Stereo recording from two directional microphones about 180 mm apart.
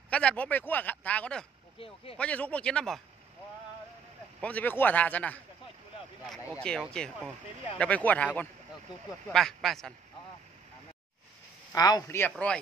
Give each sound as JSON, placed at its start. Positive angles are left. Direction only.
{"t": 0.1, "sound": "a sound", "side_deg": 5}
{"t": 2.1, "sound": "speech", "side_deg": 5}
{"t": 4.4, "sound": "speech", "side_deg": 10}
{"t": 6.4, "sound": "speech", "side_deg": 15}
{"t": 7.0, "sound": "speech", "side_deg": 5}
{"t": 9.3, "sound": "speech", "side_deg": 0}
{"t": 11.7, "sound": "speech", "side_deg": 20}